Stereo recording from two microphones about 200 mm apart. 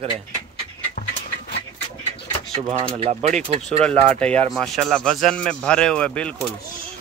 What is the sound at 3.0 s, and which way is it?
Speech, 30° right (ahead or behind).